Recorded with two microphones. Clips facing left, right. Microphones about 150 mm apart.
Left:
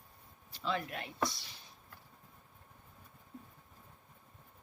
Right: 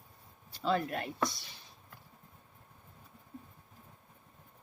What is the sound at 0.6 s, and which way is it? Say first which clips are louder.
Speech: right 6 dB; 40° right (ahead or behind).